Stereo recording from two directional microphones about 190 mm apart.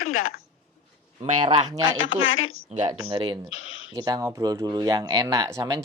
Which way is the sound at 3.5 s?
90° left.